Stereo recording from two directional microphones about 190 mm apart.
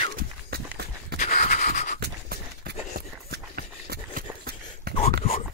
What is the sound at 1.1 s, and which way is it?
Pant, 40° left (ahead or behind).